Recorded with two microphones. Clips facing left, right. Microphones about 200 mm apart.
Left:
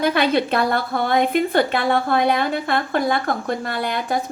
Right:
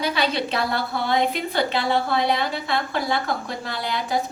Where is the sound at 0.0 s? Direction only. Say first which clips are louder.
Left 5 dB; 55° left (ahead or behind).